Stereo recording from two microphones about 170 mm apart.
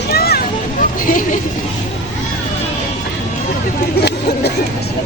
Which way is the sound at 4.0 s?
75° left (ahead or behind).